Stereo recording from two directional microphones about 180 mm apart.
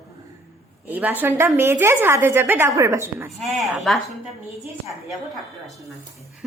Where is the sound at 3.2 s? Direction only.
Centre (ahead or behind).